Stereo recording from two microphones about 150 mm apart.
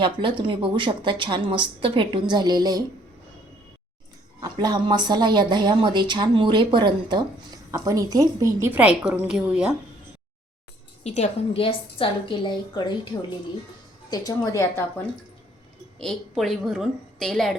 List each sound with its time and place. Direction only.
0.0 s a woman's voice: 35° right (ahead or behind)
4.6 s a woman's voice: 30° right (ahead or behind); by 9.7 s 5° right (ahead or behind)
11.0 s a woman's voice: 50° left (ahead or behind); by 15.0 s 20° left (ahead or behind)
16.0 s a woman's voice: 5° left (ahead or behind)